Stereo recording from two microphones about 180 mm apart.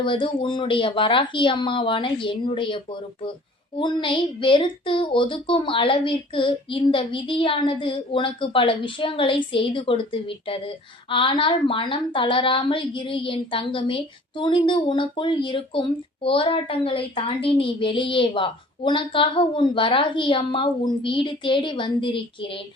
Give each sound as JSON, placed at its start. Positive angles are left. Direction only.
{"t": 0.0, "sound": "speech", "side_deg": 30}